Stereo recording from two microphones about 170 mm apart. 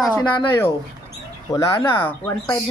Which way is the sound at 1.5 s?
20° left (ahead or behind).